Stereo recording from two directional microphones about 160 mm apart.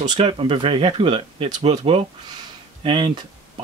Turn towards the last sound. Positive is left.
turn(degrees=-30)  # may be behind; listen again after turning